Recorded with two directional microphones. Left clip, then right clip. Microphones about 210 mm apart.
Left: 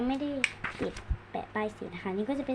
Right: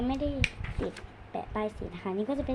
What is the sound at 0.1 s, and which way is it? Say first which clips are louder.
A woman's voice: even; centre (ahead or behind).